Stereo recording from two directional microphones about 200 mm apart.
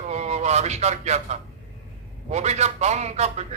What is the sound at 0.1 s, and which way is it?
A man's voice, 35° right (ahead or behind).